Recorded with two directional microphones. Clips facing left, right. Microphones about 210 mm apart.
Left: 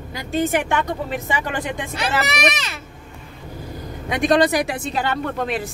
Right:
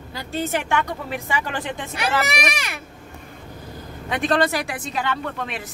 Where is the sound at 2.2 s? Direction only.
10° right (ahead or behind).